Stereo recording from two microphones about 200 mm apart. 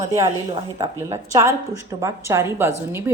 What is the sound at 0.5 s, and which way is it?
A woman's voice, 20° right (ahead or behind).